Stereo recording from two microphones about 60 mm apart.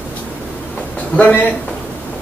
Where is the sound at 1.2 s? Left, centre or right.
Left.